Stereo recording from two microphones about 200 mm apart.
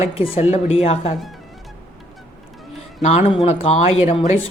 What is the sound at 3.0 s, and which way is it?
Speech, 30° left (ahead or behind).